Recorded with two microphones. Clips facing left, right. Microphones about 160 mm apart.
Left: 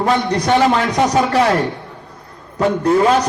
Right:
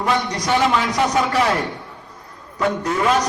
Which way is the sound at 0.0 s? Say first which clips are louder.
Left 5 dB; 60° left (ahead or behind).